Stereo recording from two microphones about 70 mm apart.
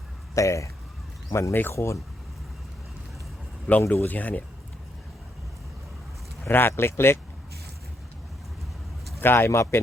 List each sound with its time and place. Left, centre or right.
0.3 s speech: left
3.9 s speech: left
6.4 s speech: left
9.2 s speech: left